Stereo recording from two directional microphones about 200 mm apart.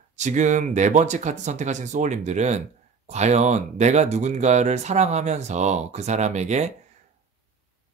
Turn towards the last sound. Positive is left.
turn(degrees=-35)  # may be behind; listen again after turning